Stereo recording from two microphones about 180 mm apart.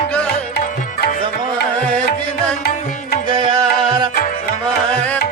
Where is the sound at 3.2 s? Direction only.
30° right (ahead or behind).